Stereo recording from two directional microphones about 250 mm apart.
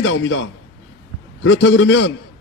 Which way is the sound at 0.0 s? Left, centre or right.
Left.